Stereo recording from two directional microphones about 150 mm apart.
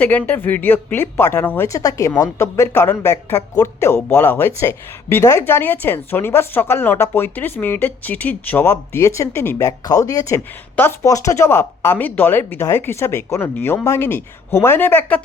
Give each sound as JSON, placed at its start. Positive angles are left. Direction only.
{"t": 0.0, "sound": "speech", "side_deg": 10}